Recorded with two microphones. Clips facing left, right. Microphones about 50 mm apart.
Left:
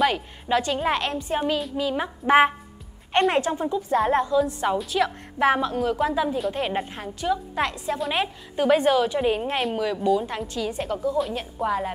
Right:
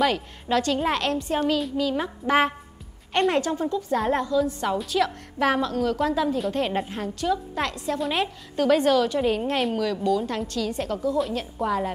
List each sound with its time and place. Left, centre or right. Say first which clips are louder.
0.0 s a woman's voice: left 1 dB; centre